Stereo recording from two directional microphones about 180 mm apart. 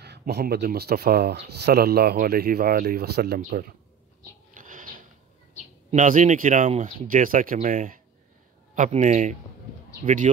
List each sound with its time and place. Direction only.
0.0 s speech: 65° right (ahead or behind)
4.2 s a sound: 45° right (ahead or behind)
5.9 s speech: 45° right (ahead or behind)